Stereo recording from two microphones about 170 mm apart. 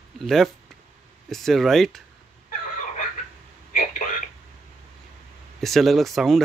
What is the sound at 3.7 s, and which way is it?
Radio, 50° left (ahead or behind).